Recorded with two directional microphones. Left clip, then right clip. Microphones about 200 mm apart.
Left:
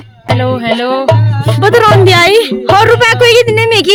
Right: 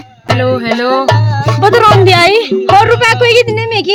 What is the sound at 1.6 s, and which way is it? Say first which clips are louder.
A woman's voice: even; 10° left (ahead or behind).